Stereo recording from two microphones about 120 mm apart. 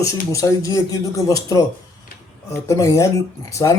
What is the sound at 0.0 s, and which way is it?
Speech, 25° left (ahead or behind).